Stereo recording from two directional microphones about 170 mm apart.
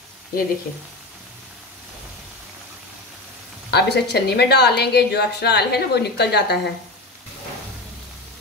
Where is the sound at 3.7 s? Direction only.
75° left (ahead or behind).